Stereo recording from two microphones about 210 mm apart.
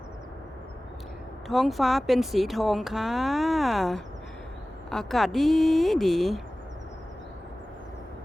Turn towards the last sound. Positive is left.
turn(degrees=0)  # may be behind; listen again after turning